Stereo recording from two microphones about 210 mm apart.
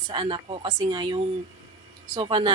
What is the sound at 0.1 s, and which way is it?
Speech, 20° right (ahead or behind).